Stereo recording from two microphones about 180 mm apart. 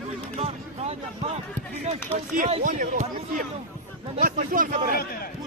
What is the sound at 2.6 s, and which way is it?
A man's voice, 50° right (ahead or behind).